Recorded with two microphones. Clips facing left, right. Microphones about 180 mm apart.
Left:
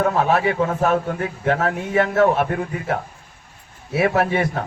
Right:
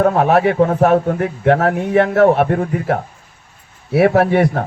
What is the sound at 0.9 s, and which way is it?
Speech, 35° right (ahead or behind).